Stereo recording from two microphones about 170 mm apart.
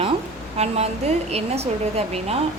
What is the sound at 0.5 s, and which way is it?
Speech, 40° right (ahead or behind).